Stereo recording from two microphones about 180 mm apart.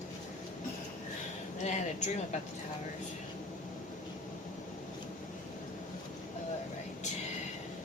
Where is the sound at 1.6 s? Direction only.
40° left (ahead or behind).